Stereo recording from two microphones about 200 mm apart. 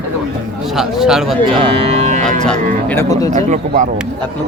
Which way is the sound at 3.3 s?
35° right (ahead or behind).